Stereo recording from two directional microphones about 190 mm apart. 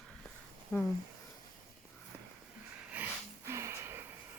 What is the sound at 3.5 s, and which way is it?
Music, 15° right (ahead or behind).